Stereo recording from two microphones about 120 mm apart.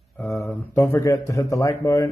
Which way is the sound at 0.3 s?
25° left (ahead or behind).